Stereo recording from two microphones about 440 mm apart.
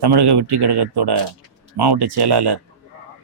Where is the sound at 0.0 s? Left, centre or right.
Right.